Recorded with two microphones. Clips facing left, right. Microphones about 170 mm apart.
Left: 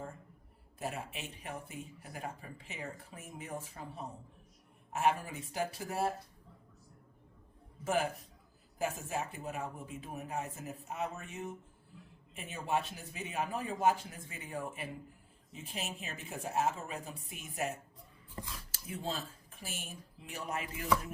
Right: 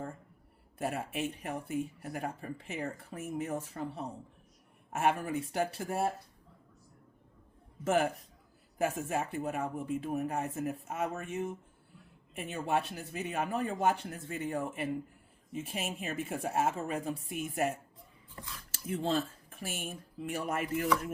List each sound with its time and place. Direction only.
0.8 s speech: 55° right (ahead or behind)
4.9 s speech: 55° right (ahead or behind)
7.9 s speech: 55° right (ahead or behind)
15.7 s a woman's voice: 50° right (ahead or behind)